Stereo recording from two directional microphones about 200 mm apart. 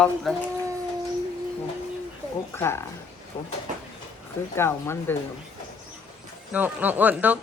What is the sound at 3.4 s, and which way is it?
Speech, 25° left (ahead or behind).